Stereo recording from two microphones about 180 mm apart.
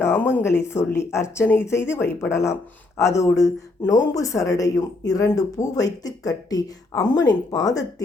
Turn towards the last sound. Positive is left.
turn(degrees=20)  # may be behind; listen again after turning